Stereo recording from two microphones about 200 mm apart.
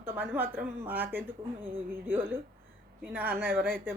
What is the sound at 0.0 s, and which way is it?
Speech, 10° right (ahead or behind).